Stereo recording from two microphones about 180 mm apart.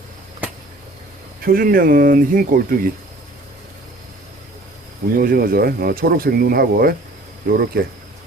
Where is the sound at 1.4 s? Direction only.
55° right (ahead or behind).